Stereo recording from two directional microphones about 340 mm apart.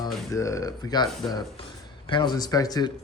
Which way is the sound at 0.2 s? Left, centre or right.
Centre.